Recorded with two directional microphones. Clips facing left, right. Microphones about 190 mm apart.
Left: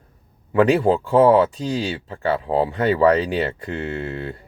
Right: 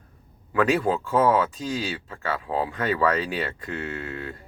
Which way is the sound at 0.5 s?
30° left (ahead or behind).